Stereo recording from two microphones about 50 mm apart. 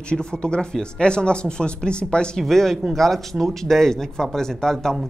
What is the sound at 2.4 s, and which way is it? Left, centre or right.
Speech, centre.